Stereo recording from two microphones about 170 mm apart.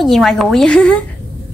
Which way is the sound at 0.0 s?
Centre (ahead or behind).